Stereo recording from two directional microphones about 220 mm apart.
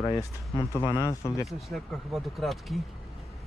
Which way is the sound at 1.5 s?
Centre (ahead or behind).